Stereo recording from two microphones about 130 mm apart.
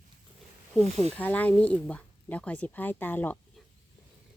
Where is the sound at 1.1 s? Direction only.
10° left (ahead or behind).